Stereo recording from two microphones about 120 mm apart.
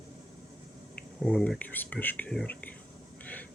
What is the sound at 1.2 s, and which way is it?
Speech, 5° left (ahead or behind).